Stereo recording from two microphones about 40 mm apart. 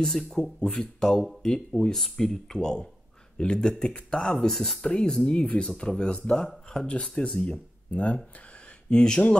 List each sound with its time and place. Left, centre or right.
0.0 s speech: centre
4.8 s speech: left
7.4 s speech: left